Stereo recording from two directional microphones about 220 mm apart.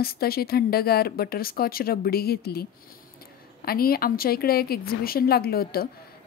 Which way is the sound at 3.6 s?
45° left (ahead or behind).